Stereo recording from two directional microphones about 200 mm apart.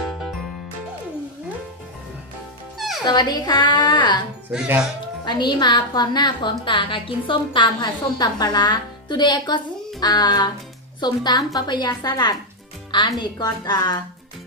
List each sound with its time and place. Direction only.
3.1 s a woman's voice: 20° left (ahead or behind)
4.5 s speech: 5° right (ahead or behind)
5.2 s a woman's voice: 20° left (ahead or behind)